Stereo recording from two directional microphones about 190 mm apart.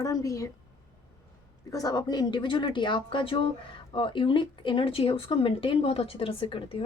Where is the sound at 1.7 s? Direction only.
20° left (ahead or behind).